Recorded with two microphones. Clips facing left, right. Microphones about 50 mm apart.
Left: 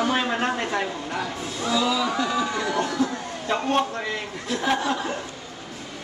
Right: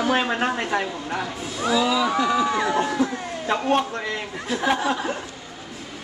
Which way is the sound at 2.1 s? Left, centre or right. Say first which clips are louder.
Right 4 dB; centre.